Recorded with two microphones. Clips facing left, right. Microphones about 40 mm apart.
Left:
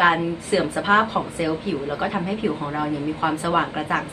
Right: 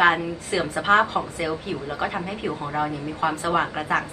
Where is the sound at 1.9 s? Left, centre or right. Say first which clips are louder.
Even; left.